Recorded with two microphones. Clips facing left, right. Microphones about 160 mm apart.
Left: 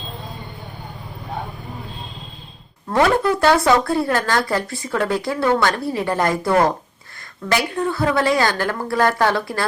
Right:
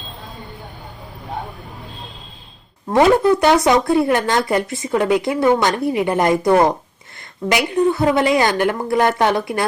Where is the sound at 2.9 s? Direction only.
20° right (ahead or behind).